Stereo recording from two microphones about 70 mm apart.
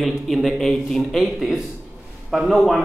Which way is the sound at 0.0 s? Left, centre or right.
Centre.